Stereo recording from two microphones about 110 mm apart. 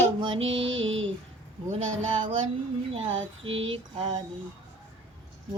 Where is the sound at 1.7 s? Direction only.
50° right (ahead or behind).